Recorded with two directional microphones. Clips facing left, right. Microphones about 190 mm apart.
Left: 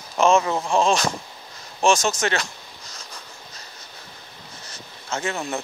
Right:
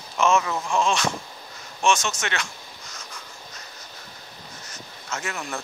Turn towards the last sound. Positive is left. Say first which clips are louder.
# left 5 dB
turn(degrees=25)  # may be behind; listen again after turning